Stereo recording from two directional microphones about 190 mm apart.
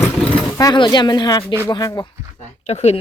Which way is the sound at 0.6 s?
20° left (ahead or behind).